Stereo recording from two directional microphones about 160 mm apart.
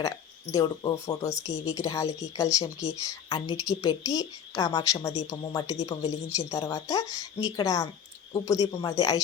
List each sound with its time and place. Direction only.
0.5 s speech: 25° left (ahead or behind)